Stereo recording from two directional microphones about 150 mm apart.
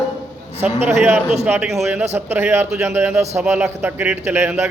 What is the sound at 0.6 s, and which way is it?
Speech, 50° right (ahead or behind).